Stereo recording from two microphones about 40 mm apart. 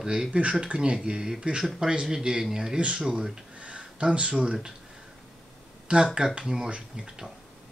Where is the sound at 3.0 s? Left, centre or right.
Right.